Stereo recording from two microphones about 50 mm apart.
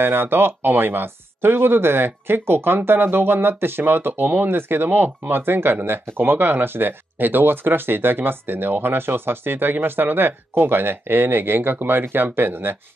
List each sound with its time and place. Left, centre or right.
0.0 s speech: right